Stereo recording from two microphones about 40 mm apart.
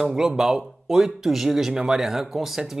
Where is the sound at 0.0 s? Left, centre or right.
Centre.